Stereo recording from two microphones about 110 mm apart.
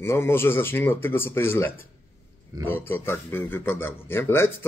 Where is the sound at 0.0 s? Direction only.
20° left (ahead or behind).